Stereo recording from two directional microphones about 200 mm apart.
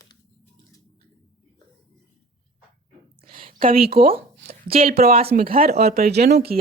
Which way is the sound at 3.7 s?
50° right (ahead or behind).